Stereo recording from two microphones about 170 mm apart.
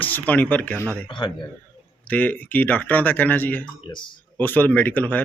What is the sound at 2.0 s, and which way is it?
Speech, 10° left (ahead or behind).